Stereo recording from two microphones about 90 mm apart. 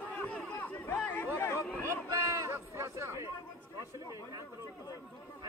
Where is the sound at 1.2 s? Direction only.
30° left (ahead or behind).